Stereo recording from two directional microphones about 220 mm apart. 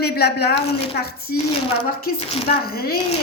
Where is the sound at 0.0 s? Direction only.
45° left (ahead or behind).